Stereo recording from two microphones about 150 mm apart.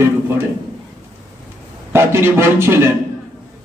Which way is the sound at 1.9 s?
15° right (ahead or behind).